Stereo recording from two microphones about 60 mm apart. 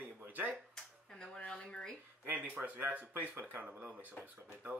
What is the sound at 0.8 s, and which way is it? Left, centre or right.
Speech, centre.